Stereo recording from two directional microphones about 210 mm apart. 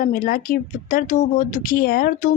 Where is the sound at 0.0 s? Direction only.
45° left (ahead or behind).